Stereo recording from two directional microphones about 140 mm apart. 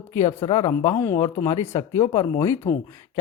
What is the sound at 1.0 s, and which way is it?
Speech, 20° left (ahead or behind).